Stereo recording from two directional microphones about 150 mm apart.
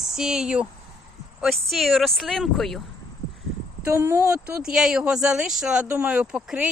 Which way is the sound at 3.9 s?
15° right (ahead or behind).